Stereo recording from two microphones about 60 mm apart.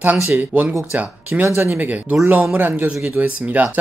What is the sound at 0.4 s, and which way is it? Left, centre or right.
Speech, right.